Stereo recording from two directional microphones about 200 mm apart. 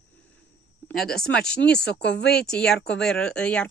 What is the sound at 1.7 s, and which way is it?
Speech, 60° left (ahead or behind).